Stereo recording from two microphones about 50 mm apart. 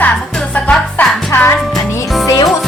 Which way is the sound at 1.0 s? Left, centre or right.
Left.